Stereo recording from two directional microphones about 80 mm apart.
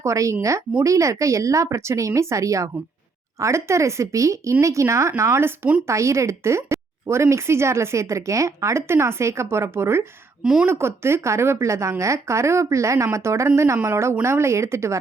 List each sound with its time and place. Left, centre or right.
0.0 s speech: right
10.4 s speech: centre
10.7 s speech: right